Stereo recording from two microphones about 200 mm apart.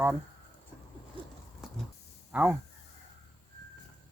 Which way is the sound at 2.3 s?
5° right (ahead or behind).